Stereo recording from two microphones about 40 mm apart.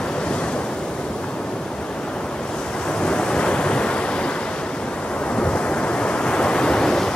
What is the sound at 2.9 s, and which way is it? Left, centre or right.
Waves, left.